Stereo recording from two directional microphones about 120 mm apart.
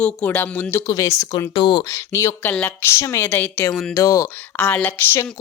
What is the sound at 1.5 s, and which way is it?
Speech, 40° left (ahead or behind).